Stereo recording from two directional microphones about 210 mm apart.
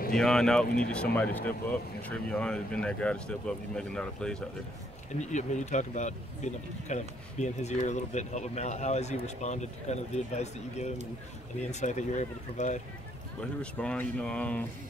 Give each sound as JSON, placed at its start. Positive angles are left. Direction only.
{"t": 0.1, "sound": "speech", "side_deg": 0}
{"t": 5.2, "sound": "speech", "side_deg": 35}
{"t": 13.4, "sound": "speech", "side_deg": 5}